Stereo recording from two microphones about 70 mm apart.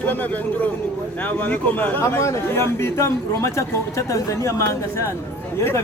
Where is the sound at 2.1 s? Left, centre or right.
Left.